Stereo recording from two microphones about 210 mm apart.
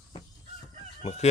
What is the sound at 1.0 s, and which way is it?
Speech, 30° left (ahead or behind).